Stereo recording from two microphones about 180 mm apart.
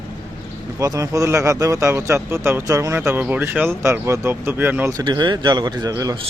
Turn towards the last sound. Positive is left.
turn(degrees=-20)  # may be behind; listen again after turning